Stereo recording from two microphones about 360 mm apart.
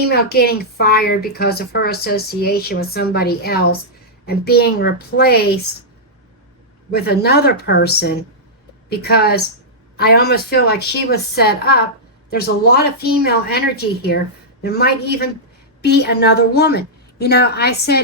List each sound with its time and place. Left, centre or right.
0.0 s speech: left
6.9 s speech: left